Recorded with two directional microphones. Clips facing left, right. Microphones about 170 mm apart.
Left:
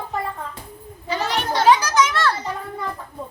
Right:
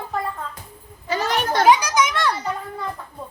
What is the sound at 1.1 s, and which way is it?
Children playing, 45° right (ahead or behind).